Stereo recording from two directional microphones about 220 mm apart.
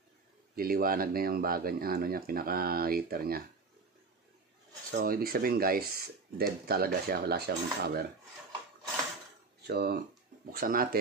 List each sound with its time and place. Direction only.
0.6 s speech: 40° right (ahead or behind)
4.9 s speech: 40° right (ahead or behind)
9.6 s speech: 45° right (ahead or behind)